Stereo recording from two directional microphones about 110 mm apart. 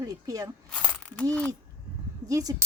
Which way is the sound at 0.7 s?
10° left (ahead or behind).